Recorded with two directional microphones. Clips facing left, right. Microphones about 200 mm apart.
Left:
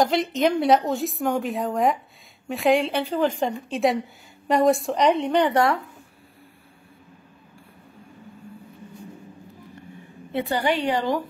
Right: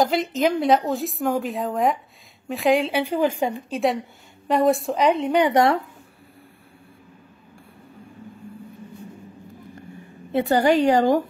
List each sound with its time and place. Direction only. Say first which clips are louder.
0.0 s a woman's voice: even; centre (ahead or behind)
3.0 s a woman's voice: right 1 dB; 10° right (ahead or behind)
5.4 s a woman's voice: right 5 dB; 20° right (ahead or behind)
10.3 s a woman's voice: right 6 dB; 45° right (ahead or behind)